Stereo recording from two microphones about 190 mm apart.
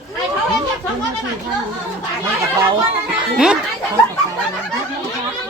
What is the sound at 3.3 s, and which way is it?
Speech, 5° right (ahead or behind).